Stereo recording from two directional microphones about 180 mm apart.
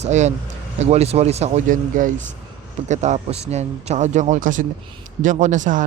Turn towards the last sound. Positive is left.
turn(degrees=-45)  # may be behind; listen again after turning